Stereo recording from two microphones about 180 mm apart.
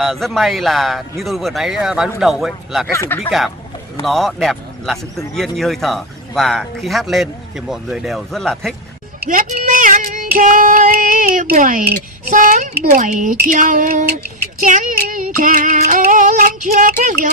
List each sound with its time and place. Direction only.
0.0 s speech: centre (ahead or behind)
2.9 s speech: 15° left (ahead or behind)
3.3 s speech: centre (ahead or behind)
9.3 s female singing: 45° right (ahead or behind)